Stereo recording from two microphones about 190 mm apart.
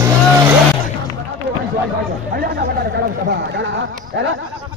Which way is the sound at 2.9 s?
60° right (ahead or behind).